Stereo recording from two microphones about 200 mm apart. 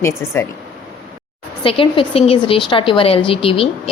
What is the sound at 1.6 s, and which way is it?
A woman's voice, 25° left (ahead or behind).